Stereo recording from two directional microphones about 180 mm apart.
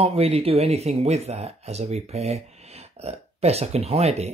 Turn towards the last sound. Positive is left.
turn(degrees=-35)  # may be behind; listen again after turning